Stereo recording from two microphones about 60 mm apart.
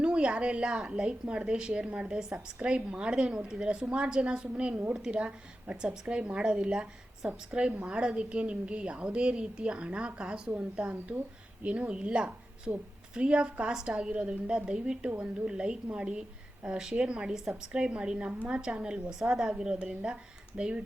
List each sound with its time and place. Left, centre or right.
0.0 s a woman's voice: centre